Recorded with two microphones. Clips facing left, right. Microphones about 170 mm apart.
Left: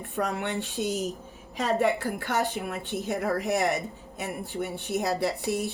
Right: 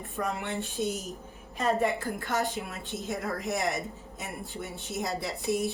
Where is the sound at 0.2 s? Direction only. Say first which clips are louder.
Left 4 dB; 70° left (ahead or behind).